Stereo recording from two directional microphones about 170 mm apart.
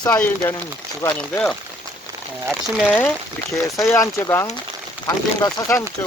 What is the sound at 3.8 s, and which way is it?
Speech, 15° left (ahead or behind).